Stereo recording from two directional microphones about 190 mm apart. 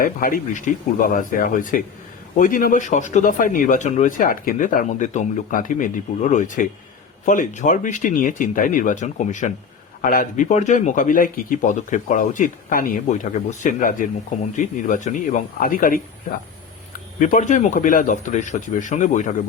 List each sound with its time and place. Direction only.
0.0 s speech: 50° left (ahead or behind)
17.2 s speech: 45° left (ahead or behind)